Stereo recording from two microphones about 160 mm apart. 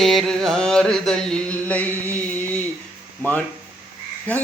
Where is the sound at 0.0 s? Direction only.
Centre (ahead or behind).